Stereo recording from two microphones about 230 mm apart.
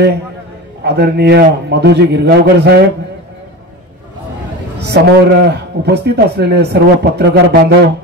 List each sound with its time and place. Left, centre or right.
0.8 s a man's voice: right
4.7 s a man's voice: right